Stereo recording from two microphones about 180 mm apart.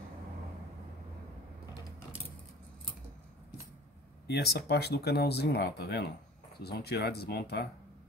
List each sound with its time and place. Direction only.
4.3 s speech: 65° left (ahead or behind)